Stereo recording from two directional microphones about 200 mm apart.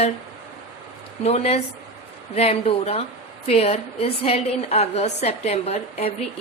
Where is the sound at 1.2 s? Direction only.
30° left (ahead or behind).